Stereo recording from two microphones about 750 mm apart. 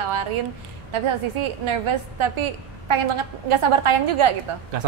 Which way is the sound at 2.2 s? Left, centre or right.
Right.